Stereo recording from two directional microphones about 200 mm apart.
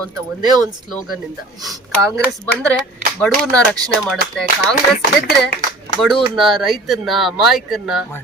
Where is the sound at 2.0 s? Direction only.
15° right (ahead or behind).